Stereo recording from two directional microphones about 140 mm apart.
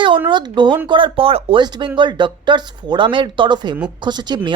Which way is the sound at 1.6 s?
30° right (ahead or behind).